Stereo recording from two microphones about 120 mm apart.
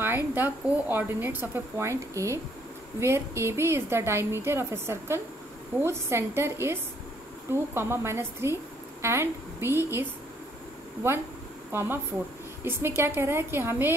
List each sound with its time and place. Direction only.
0.0 s speech: 20° right (ahead or behind)
11.7 s speech: 20° right (ahead or behind)